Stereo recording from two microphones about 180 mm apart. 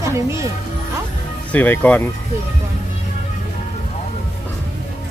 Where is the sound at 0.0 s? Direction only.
15° right (ahead or behind).